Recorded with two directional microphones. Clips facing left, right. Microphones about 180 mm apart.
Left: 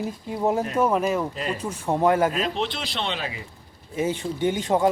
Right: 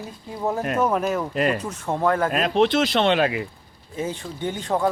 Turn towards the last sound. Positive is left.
turn(degrees=20)  # may be behind; listen again after turning